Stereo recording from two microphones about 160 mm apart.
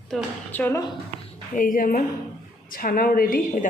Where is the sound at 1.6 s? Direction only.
60° left (ahead or behind).